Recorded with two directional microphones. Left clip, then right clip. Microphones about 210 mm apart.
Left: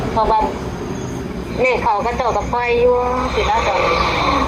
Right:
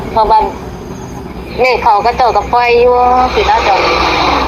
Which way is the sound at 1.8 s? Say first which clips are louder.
Right 8 dB; 50° right (ahead or behind).